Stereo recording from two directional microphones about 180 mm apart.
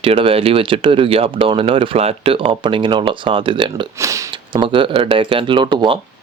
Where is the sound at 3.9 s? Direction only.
15° right (ahead or behind).